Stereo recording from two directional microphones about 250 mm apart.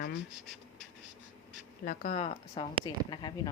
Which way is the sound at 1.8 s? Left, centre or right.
Left.